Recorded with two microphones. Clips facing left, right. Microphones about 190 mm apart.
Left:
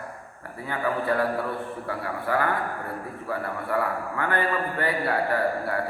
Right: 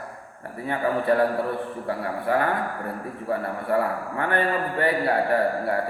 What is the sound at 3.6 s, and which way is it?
A man's voice, 25° right (ahead or behind).